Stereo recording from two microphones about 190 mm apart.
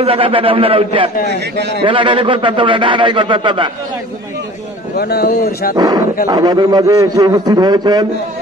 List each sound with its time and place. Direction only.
0.0 s a man's voice: 30° right (ahead or behind)
1.3 s a man's voice: 65° right (ahead or behind)
1.9 s a man's voice: 25° right (ahead or behind)
4.9 s a man's voice: 55° left (ahead or behind)
5.8 s a man's voice: 20° right (ahead or behind)